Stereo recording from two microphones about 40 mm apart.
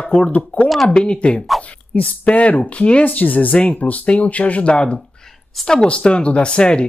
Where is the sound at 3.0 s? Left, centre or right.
Left.